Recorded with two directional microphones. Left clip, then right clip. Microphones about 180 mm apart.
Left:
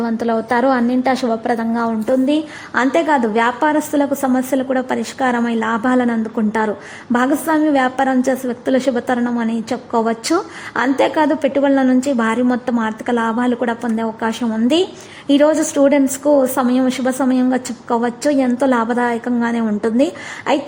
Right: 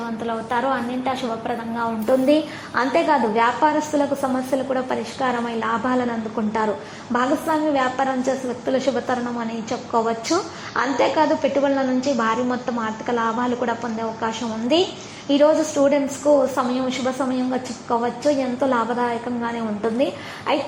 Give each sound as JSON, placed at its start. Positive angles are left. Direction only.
{"t": 0.2, "sound": "a woman's voice", "side_deg": 40}
{"t": 2.0, "sound": "a woman's voice", "side_deg": 20}